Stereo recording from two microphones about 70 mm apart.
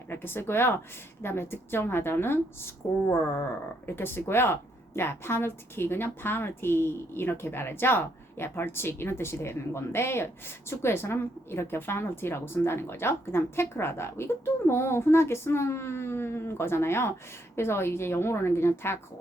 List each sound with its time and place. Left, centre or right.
0.1 s a woman's voice: left